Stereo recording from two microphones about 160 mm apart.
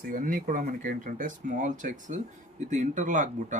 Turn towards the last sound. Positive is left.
turn(degrees=-50)  # may be behind; listen again after turning